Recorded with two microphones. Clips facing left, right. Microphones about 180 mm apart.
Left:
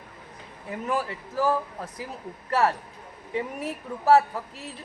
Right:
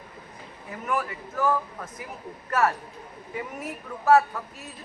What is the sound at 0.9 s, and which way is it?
A man's voice, 30° left (ahead or behind).